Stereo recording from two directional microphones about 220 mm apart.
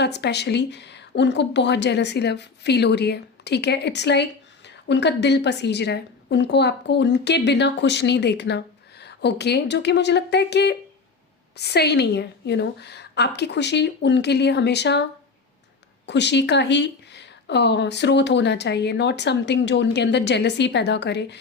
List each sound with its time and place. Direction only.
0.0 s speech: 50° left (ahead or behind)
16.0 s speech: 50° left (ahead or behind)